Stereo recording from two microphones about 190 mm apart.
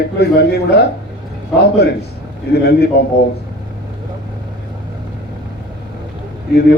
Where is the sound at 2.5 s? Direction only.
60° left (ahead or behind).